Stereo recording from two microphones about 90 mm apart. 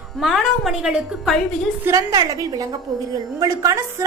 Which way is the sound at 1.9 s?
40° right (ahead or behind).